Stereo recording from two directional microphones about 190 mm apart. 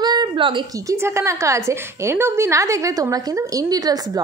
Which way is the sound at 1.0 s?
15° right (ahead or behind).